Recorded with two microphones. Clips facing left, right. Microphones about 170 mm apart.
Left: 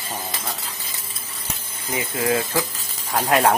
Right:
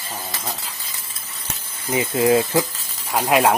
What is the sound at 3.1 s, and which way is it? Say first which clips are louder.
Speech: right 1 dB; 10° right (ahead or behind).